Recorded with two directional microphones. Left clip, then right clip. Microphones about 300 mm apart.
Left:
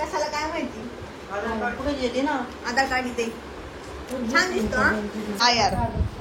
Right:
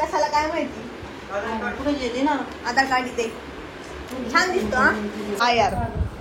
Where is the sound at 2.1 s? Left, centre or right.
Centre.